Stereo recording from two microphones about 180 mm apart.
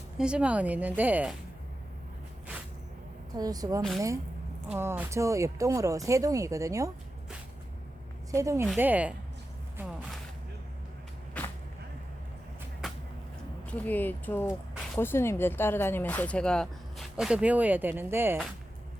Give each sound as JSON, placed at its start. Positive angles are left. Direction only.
{"t": 0.2, "sound": "speech", "side_deg": -5}
{"t": 3.3, "sound": "a woman's voice", "side_deg": -20}
{"t": 8.3, "sound": "speech", "side_deg": -15}
{"t": 11.4, "sound": "a sound", "side_deg": 10}
{"t": 12.8, "sound": "vehicle", "side_deg": 0}
{"t": 13.7, "sound": "a woman's voice", "side_deg": 10}